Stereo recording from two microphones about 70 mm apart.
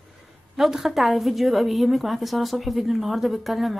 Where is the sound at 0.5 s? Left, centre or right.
Centre.